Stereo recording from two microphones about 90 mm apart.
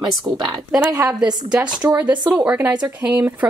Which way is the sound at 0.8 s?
25° right (ahead or behind).